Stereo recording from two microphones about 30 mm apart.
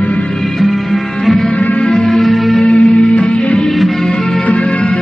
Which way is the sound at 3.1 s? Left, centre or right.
Left.